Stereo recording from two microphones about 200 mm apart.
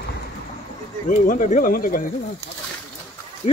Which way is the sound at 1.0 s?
40° left (ahead or behind).